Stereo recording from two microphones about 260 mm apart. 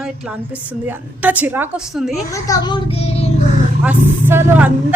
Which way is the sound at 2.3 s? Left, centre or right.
Centre.